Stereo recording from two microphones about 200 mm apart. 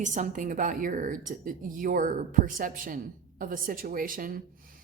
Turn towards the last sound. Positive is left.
turn(degrees=-45)  # may be behind; listen again after turning